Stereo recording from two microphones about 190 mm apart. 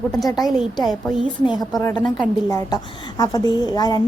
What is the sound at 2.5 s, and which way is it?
A woman's voice, 20° left (ahead or behind).